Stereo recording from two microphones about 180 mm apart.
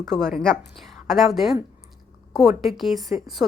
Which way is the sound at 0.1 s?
Centre (ahead or behind).